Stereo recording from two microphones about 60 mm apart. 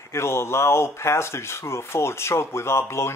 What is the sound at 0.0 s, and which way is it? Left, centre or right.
Speech, left.